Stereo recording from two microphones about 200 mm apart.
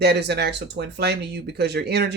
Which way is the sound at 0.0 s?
55° right (ahead or behind).